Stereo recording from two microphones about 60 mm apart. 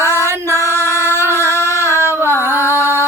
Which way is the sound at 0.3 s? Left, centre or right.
Right.